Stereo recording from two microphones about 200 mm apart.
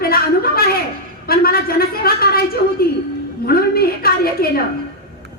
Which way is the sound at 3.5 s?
50° left (ahead or behind).